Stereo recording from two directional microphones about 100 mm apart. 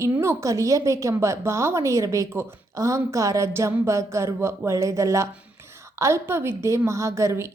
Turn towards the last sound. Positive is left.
turn(degrees=-30)  # may be behind; listen again after turning